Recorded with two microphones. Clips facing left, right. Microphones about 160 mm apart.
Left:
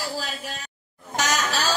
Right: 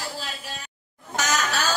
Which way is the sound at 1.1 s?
30° left (ahead or behind).